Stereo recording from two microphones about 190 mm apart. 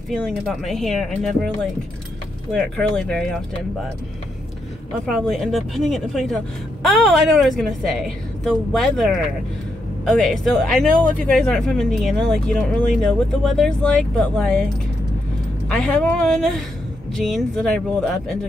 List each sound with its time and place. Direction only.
0.1 s speech: centre (ahead or behind)
2.5 s speech: 5° left (ahead or behind)
5.0 s speech: centre (ahead or behind)
15.7 s speech: 5° left (ahead or behind)